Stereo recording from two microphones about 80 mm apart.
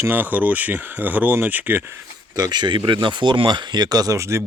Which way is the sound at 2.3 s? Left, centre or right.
Right.